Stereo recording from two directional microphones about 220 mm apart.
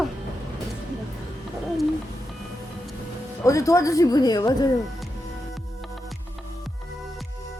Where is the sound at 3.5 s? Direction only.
15° left (ahead or behind).